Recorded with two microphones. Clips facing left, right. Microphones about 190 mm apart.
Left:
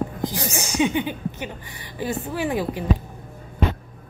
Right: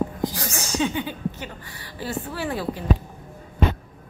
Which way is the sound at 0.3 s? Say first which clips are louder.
Left 2 dB; 20° left (ahead or behind).